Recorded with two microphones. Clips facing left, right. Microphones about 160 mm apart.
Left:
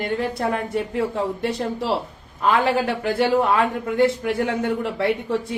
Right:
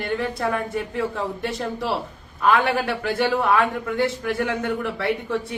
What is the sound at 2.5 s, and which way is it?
Speech, 30° left (ahead or behind).